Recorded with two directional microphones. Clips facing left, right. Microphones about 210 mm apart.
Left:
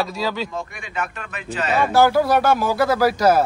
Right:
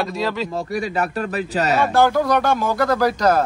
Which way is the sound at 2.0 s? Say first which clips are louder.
Left 2 dB; 5° left (ahead or behind).